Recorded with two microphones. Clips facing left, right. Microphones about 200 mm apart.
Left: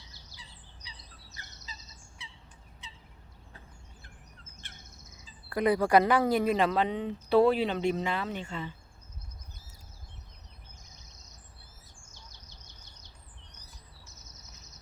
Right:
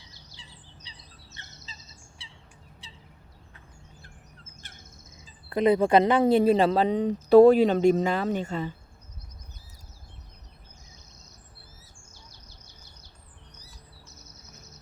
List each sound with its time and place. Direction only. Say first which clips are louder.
0.1 s bird: right 2 dB; 20° right (ahead or behind)
2.2 s bird vocalization: left 4 dB; 30° right (ahead or behind)
2.8 s bird: left 2 dB; 35° right (ahead or behind)
4.6 s a sound: even; 40° right (ahead or behind)
5.5 s speech: right 4 dB; 20° right (ahead or behind); by 8.7 s 40° right (ahead or behind)
12.1 s bird: right 2 dB; 10° right (ahead or behind)